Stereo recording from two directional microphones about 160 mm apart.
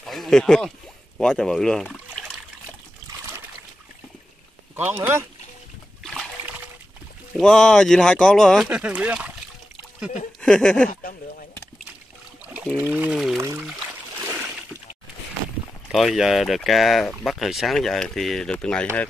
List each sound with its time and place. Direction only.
0.0 s speech: centre (ahead or behind)
4.7 s speech: 15° right (ahead or behind)
7.3 s speech: 5° left (ahead or behind)
8.6 s speech: 10° right (ahead or behind)
10.4 s speech: 5° left (ahead or behind)
12.7 s speech: 10° right (ahead or behind)
14.2 s a sound: 15° right (ahead or behind)
15.9 s speech: centre (ahead or behind)